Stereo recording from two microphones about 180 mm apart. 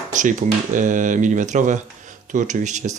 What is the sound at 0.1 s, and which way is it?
Speech, 45° right (ahead or behind).